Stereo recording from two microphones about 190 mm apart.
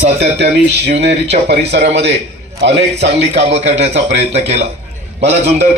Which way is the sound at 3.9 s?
65° right (ahead or behind).